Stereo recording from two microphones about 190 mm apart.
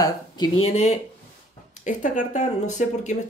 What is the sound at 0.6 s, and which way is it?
Speech, 35° left (ahead or behind).